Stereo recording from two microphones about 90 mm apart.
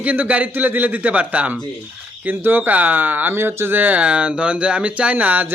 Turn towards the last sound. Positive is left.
turn(degrees=-15)  # may be behind; listen again after turning